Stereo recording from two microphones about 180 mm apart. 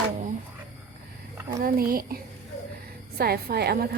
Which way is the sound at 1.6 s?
55° right (ahead or behind).